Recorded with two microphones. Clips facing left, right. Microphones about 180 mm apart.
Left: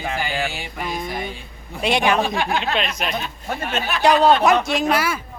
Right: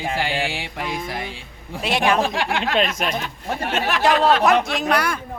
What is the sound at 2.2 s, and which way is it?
Speech, 90° right.